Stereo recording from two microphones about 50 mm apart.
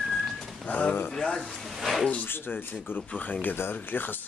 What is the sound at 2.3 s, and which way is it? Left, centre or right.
Speech, left.